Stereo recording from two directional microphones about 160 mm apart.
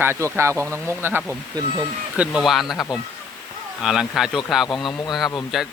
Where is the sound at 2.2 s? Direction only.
5° right (ahead or behind).